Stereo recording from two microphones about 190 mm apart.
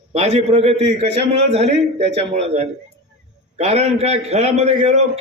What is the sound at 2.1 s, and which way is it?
A man's voice, 35° right (ahead or behind).